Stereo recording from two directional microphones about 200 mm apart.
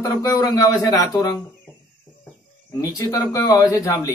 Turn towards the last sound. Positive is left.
turn(degrees=15)  # may be behind; listen again after turning